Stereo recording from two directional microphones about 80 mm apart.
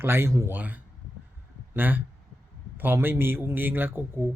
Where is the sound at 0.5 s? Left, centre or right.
Right.